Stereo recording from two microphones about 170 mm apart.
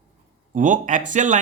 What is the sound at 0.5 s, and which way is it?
Speech, 50° right (ahead or behind).